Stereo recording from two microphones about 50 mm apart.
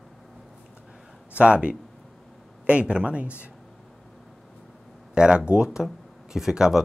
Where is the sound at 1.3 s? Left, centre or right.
Right.